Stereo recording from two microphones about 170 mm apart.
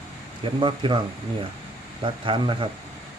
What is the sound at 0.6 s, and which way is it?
Speech, 30° right (ahead or behind).